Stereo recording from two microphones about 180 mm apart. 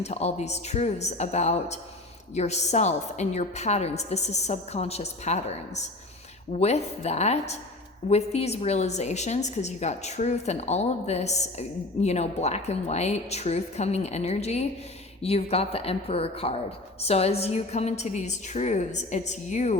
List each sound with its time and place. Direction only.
0.0 s a woman's voice: 35° left (ahead or behind)